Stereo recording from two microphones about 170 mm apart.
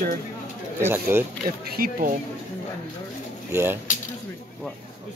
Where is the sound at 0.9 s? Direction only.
10° right (ahead or behind).